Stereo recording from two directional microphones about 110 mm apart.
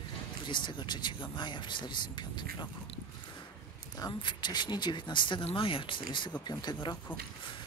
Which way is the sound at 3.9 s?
40° left (ahead or behind).